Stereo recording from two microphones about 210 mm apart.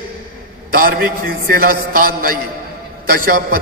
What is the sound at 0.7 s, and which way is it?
A man's voice, 45° right (ahead or behind).